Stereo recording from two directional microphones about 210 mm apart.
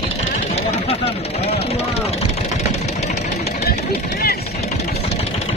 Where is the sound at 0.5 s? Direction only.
30° left (ahead or behind).